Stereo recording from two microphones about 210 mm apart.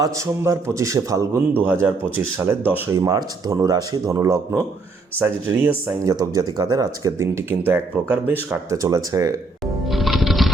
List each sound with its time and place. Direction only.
0.0 s speech: 15° right (ahead or behind)
9.9 s music: centre (ahead or behind)